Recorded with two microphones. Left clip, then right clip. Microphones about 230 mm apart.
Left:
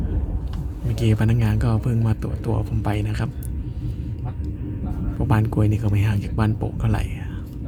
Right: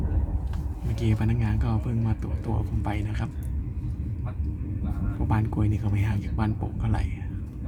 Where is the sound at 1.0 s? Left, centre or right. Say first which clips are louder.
Left 6 dB; centre.